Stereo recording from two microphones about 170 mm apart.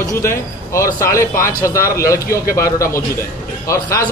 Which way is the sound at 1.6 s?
15° left (ahead or behind).